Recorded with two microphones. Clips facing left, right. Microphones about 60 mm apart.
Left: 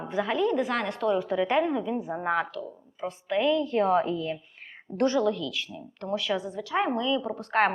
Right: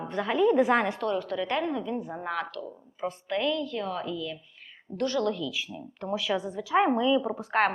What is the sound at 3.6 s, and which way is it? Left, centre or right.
A woman's voice, left.